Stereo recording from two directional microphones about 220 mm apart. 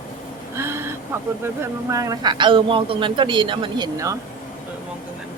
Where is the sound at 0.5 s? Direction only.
10° right (ahead or behind).